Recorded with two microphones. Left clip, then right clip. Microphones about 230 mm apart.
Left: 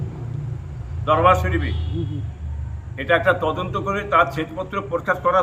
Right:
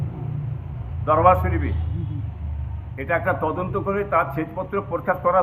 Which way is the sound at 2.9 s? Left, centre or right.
Left.